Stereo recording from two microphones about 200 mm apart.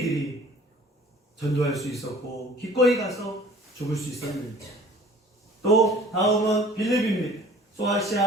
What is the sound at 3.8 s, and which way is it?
Speech, 15° left (ahead or behind).